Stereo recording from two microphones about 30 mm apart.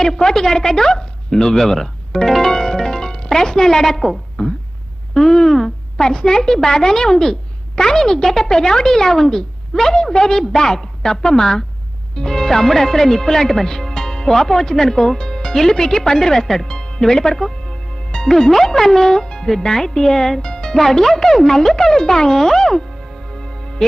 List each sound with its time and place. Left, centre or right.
0.0 s speech: centre
2.2 s music: centre
3.2 s a woman's voice: centre
4.4 s a sound: left
5.2 s speech: left
5.5 s a sound: centre
6.0 s a woman's voice: left
16.6 s music: left
17.0 s speech: centre
20.4 s music: left
21.0 s speech: centre
23.3 s music: left